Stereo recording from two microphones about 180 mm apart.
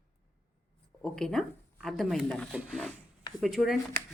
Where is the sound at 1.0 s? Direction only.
5° left (ahead or behind).